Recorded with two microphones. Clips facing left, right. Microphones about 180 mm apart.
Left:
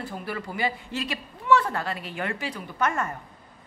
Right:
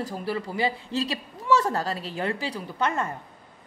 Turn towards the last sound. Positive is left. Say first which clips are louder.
# even
turn(degrees=-30)  # may be behind; listen again after turning